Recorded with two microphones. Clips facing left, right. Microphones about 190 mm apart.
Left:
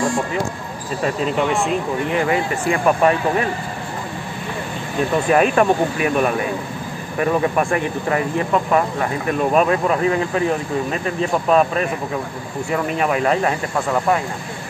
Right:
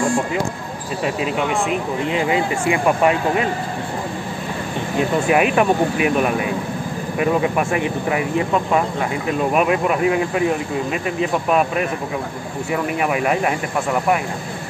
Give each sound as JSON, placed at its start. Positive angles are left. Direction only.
{"t": 1.0, "sound": "speech", "side_deg": -10}
{"t": 5.3, "sound": "speech", "side_deg": -10}
{"t": 13.0, "sound": "speech", "side_deg": -10}